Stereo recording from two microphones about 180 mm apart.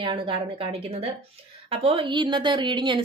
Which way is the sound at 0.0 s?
30° right (ahead or behind).